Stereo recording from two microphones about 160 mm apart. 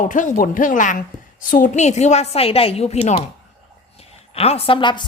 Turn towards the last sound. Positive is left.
turn(degrees=30)  # may be behind; listen again after turning